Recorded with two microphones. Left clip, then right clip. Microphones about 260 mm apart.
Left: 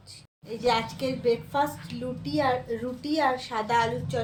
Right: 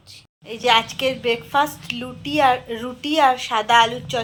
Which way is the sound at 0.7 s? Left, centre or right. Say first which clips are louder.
Right 9 dB; right.